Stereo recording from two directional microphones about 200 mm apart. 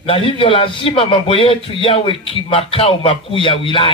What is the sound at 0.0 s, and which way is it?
A man's voice, 25° left (ahead or behind).